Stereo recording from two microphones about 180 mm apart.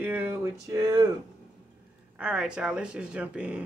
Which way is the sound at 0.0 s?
10° right (ahead or behind).